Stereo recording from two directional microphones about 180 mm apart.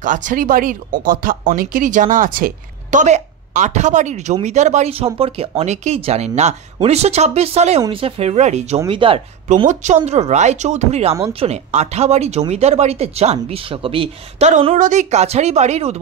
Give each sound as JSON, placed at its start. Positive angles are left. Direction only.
{"t": 0.0, "sound": "speech", "side_deg": -45}
{"t": 9.7, "sound": "speech", "side_deg": -40}